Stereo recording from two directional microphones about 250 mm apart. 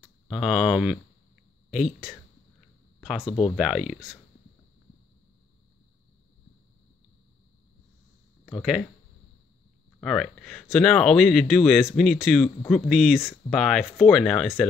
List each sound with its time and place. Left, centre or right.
0.3 s speech: centre
3.2 s speech: centre
3.5 s speech: centre
8.5 s speech: centre
9.9 s speech: centre